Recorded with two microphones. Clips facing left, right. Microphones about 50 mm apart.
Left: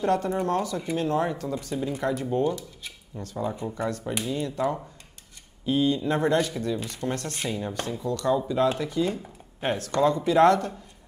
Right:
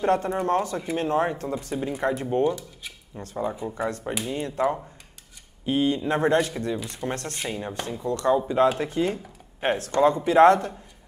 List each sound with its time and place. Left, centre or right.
0.0 s speech: right
7.0 s speech: centre
8.0 s speech: right